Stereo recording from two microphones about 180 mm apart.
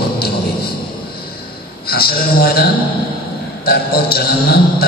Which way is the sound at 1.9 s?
60° left (ahead or behind).